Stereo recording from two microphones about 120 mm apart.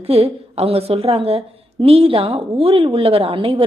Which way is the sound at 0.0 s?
55° right (ahead or behind).